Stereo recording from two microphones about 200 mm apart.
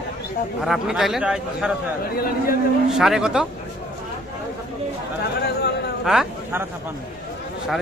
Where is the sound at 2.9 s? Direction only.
Centre (ahead or behind).